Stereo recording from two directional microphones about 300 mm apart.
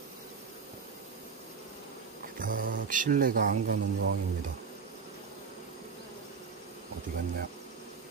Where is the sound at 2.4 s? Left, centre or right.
Right.